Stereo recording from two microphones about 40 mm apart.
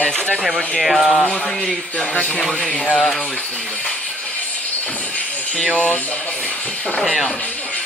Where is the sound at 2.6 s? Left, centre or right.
Centre.